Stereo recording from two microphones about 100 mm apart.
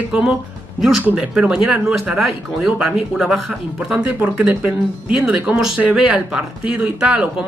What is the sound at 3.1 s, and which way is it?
Speech, centre (ahead or behind).